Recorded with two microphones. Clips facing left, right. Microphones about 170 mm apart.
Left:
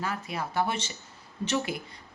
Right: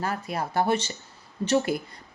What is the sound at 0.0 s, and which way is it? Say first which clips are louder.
Speech: right 4 dB; 45° right (ahead or behind).